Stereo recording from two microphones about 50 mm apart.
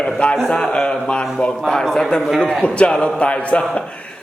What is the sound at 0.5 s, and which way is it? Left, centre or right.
Speech, centre.